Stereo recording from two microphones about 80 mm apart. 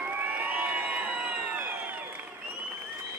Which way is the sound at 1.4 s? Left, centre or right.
Right.